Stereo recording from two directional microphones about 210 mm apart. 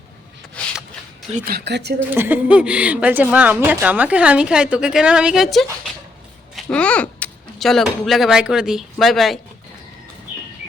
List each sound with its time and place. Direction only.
0.6 s a sound: 5° left (ahead or behind)
1.5 s speech: 50° right (ahead or behind)
2.1 s a woman's voice: 10° right (ahead or behind)